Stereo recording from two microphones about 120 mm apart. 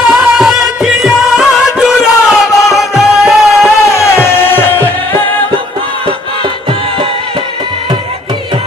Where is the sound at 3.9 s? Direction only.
20° left (ahead or behind).